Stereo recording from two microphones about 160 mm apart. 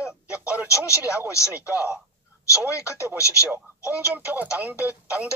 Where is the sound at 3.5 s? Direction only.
10° right (ahead or behind).